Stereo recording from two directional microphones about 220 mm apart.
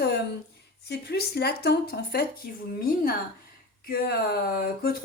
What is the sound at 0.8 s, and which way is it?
Speech, 45° left (ahead or behind).